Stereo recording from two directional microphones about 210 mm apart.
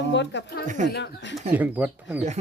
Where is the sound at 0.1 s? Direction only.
55° left (ahead or behind).